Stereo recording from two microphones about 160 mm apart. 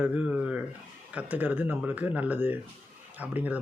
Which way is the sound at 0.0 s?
10° right (ahead or behind).